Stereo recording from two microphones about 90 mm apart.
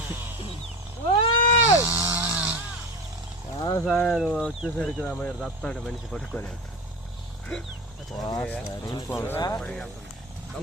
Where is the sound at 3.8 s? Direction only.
5° left (ahead or behind).